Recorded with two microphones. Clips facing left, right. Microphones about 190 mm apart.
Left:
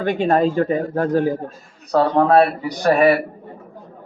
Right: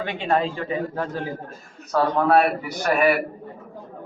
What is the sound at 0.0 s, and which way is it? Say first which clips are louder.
A man's voice: left 6 dB; 45° left (ahead or behind).